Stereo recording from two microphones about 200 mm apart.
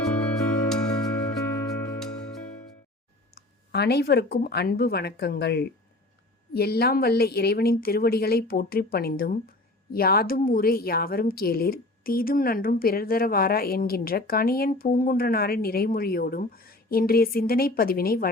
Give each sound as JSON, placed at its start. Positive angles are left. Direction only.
{"t": 0.0, "sound": "music", "side_deg": 0}
{"t": 3.3, "sound": "a woman's voice", "side_deg": 55}